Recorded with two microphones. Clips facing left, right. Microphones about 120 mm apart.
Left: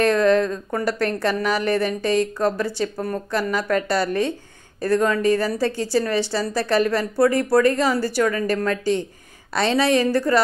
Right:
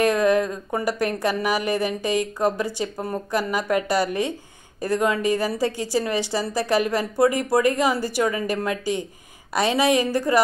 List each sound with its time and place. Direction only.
0.0 s speech: 15° right (ahead or behind)